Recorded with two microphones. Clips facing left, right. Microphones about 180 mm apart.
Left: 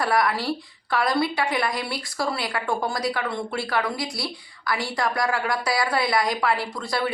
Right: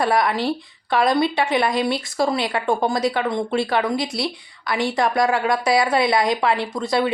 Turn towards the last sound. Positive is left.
turn(degrees=-20)  # may be behind; listen again after turning